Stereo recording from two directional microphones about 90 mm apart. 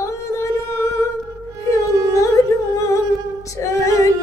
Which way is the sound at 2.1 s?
35° left (ahead or behind).